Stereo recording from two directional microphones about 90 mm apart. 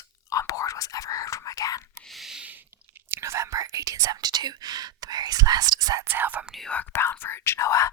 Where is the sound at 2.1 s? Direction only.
5° right (ahead or behind).